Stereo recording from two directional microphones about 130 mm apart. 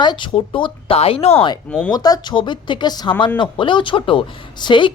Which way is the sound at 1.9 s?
30° left (ahead or behind).